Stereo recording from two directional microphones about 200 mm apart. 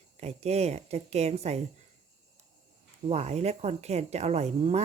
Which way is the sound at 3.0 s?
35° right (ahead or behind).